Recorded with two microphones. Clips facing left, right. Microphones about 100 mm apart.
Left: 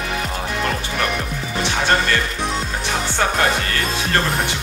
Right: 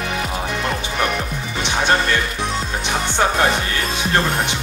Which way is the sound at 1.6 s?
20° right (ahead or behind).